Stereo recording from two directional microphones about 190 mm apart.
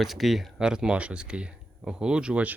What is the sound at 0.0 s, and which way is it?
Speech, centre (ahead or behind).